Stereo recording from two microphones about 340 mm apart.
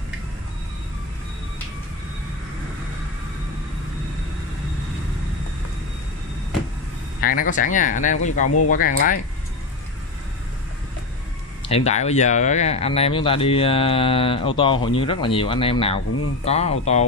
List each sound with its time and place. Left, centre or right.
7.2 s speech: left
11.7 s speech: centre